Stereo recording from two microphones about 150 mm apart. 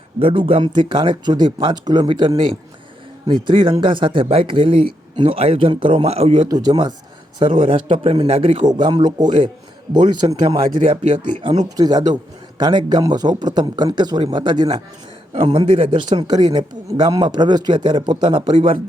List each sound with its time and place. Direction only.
0.2 s a man's voice: 40° right (ahead or behind)
6.5 s speech: 25° right (ahead or behind)
8.6 s speech: 30° right (ahead or behind)
10.8 s a man's voice: 55° right (ahead or behind)
11.8 s speech: 25° right (ahead or behind); by 16.1 s 45° right (ahead or behind)
16.1 s speech: 25° right (ahead or behind)